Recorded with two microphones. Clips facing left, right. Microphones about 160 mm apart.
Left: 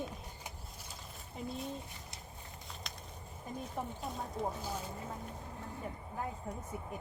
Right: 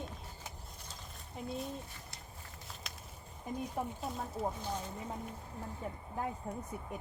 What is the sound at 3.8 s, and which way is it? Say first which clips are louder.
Speech: right 1 dB; 10° right (ahead or behind).